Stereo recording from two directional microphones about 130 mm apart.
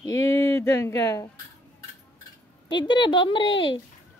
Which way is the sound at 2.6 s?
35° left (ahead or behind).